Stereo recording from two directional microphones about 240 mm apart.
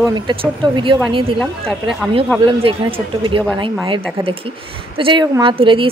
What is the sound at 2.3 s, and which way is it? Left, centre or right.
A woman's voice, centre.